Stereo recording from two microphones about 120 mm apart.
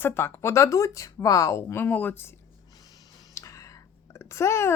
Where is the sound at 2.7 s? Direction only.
30° left (ahead or behind).